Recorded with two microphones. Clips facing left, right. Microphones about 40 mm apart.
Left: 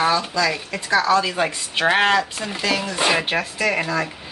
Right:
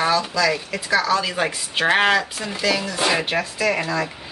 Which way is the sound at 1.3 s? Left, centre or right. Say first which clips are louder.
Left 1 dB; centre.